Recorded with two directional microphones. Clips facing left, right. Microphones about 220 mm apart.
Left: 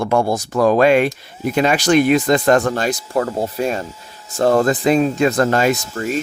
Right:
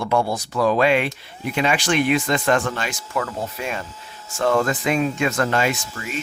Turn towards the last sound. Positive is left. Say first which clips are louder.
# left 8 dB
turn(degrees=40)  # may be behind; listen again after turning